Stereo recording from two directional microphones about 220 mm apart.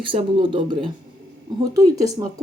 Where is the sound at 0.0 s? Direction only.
20° right (ahead or behind).